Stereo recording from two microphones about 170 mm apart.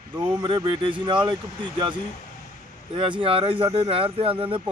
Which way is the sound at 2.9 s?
30° right (ahead or behind).